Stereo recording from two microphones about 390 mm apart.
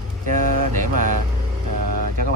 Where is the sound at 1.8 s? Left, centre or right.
Right.